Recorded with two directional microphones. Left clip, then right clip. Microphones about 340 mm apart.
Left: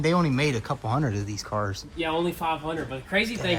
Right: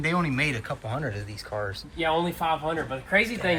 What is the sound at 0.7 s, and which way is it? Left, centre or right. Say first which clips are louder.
Speech: left 3 dB; left.